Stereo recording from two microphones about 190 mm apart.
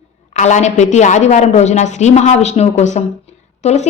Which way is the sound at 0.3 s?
40° left (ahead or behind).